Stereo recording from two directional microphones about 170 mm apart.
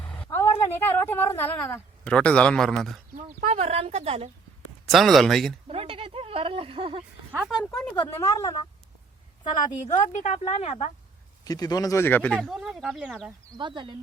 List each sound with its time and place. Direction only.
0.0 s vehicle: 10° left (ahead or behind)
2.0 s speech: 5° left (ahead or behind)
3.4 s a woman's voice: 40° right (ahead or behind)
4.9 s speech: centre (ahead or behind)
5.6 s speech: 35° right (ahead or behind)
7.3 s speech: 5° right (ahead or behind)
8.0 s a woman's voice: 15° left (ahead or behind)
9.8 s speech: 45° left (ahead or behind)
11.4 s speech: 20° left (ahead or behind); by 13.3 s 5° right (ahead or behind)
13.5 s speech: 25° right (ahead or behind)